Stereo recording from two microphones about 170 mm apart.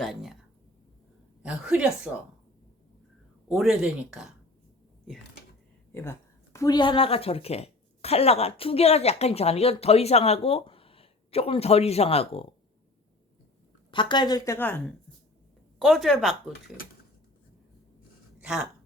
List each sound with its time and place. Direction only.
0.0 s speech: centre (ahead or behind)
1.4 s a woman's voice: 5° right (ahead or behind)
3.5 s speech: 5° right (ahead or behind)
5.9 s a woman's voice: 15° left (ahead or behind); by 12.5 s 35° left (ahead or behind)
13.9 s speech: 25° left (ahead or behind); by 14.9 s 10° left (ahead or behind)
15.8 s speech: centre (ahead or behind)
18.3 s speech: 5° right (ahead or behind)